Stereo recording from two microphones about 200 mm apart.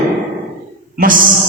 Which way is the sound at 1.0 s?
45° right (ahead or behind).